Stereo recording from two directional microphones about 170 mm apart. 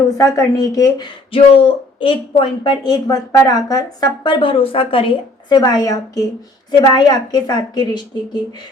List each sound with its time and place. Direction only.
0.2 s speech: 20° left (ahead or behind)
1.3 s speech: 30° left (ahead or behind)